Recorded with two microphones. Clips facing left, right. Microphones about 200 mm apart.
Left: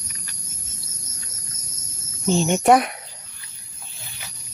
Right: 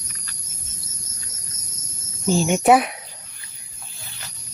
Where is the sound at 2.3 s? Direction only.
10° right (ahead or behind).